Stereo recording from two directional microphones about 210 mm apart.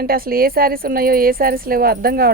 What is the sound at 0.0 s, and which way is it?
Speech, 45° right (ahead or behind).